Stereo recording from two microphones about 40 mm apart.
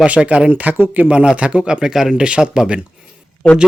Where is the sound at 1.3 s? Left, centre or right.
Right.